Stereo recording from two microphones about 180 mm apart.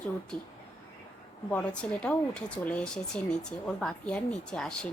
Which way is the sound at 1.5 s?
5° left (ahead or behind).